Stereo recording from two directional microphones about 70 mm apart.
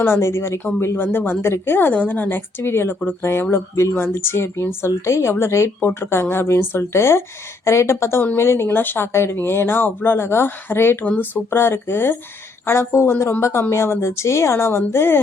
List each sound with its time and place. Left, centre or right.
0.0 s speech: left